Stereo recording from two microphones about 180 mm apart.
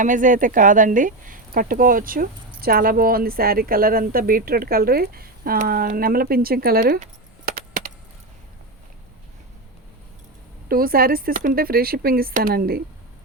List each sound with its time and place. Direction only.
0.0 s speech: 45° right (ahead or behind)
10.7 s speech: 55° right (ahead or behind)